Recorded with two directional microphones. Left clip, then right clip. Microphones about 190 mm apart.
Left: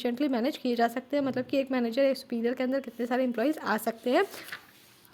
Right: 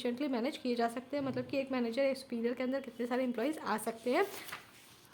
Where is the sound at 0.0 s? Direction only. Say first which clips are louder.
Left 7 dB; 30° left (ahead or behind).